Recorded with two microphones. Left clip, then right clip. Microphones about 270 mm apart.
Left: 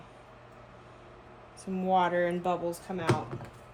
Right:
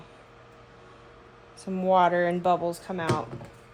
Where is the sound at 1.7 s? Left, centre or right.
Right.